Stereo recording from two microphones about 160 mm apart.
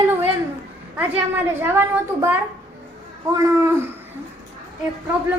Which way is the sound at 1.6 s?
15° right (ahead or behind).